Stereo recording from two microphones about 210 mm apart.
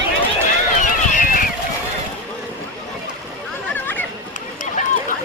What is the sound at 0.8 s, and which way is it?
Run, 35° left (ahead or behind).